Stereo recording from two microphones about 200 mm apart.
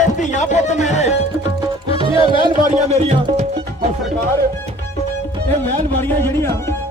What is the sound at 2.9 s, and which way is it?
Speech, 35° right (ahead or behind).